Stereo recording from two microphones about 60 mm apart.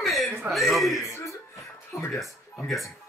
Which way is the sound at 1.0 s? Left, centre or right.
Left.